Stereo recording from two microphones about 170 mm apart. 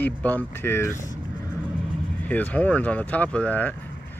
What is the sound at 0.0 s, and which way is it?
Speech, 10° left (ahead or behind).